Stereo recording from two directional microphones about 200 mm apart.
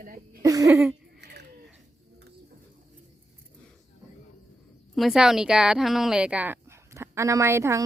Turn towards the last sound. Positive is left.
turn(degrees=-15)  # may be behind; listen again after turning